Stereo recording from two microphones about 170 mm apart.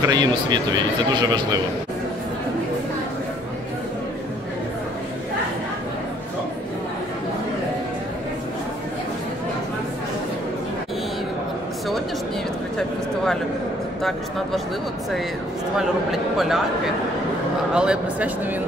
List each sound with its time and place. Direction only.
0.0 s speech: 25° right (ahead or behind)
12.7 s a sound: 5° left (ahead or behind)
16.1 s speech: centre (ahead or behind)